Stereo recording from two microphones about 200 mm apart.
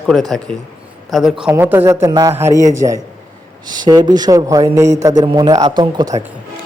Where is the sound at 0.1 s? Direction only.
Centre (ahead or behind); by 6.2 s 20° right (ahead or behind).